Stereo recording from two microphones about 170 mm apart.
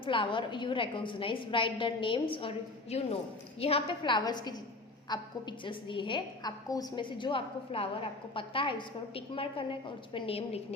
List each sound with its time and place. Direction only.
0.0 s a woman's voice: 30° left (ahead or behind)